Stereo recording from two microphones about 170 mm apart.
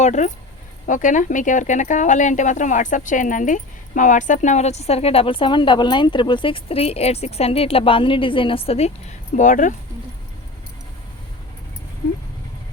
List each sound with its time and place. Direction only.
0.0 s speech: 45° left (ahead or behind)